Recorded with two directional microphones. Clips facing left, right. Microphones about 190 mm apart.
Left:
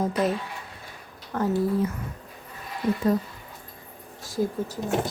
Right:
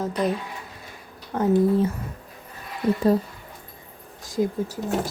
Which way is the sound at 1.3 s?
20° right (ahead or behind).